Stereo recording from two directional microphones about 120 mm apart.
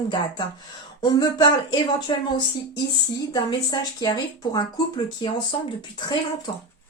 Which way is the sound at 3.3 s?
35° left (ahead or behind).